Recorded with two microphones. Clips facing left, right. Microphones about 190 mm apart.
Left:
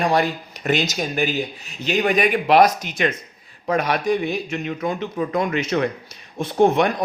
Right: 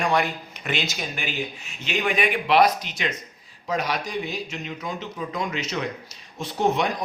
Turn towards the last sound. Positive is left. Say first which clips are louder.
# left 6 dB
turn(degrees=55)  # may be behind; listen again after turning